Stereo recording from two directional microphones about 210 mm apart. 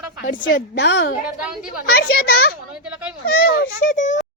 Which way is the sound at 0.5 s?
50° left (ahead or behind).